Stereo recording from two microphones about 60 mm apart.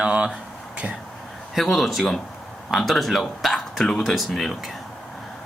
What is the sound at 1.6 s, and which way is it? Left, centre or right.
Speech, centre.